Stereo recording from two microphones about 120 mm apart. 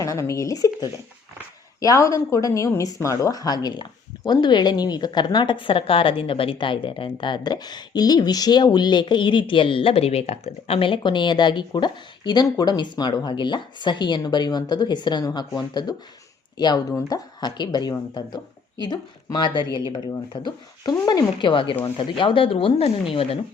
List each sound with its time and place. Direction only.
0.0 s a woman's voice: 25° left (ahead or behind); by 23.4 s 50° left (ahead or behind)